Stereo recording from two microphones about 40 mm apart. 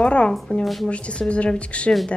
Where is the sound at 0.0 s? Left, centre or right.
Left.